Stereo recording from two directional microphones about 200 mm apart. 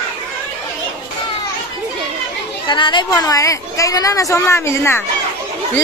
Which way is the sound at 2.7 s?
25° left (ahead or behind).